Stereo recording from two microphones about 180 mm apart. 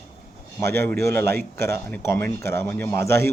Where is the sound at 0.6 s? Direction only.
10° left (ahead or behind).